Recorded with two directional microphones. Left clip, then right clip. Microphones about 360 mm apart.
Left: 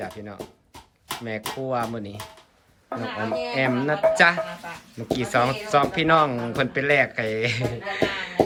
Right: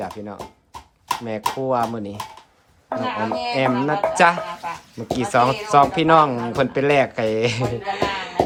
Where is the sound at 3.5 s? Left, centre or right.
Centre.